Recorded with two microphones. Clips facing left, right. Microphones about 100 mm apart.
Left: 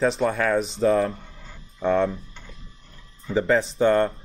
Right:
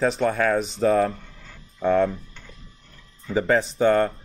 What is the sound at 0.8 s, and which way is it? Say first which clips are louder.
Speech: right 1 dB; 75° right (ahead or behind).